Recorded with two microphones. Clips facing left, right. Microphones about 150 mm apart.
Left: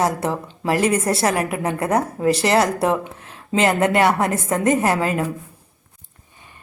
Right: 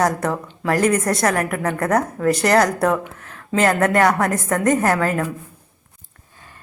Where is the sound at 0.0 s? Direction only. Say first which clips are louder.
Right 1 dB; 25° left (ahead or behind).